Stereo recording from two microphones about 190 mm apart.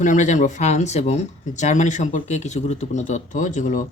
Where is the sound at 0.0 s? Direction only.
40° left (ahead or behind).